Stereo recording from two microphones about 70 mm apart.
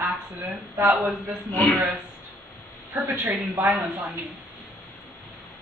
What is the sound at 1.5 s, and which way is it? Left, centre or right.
Speech, left.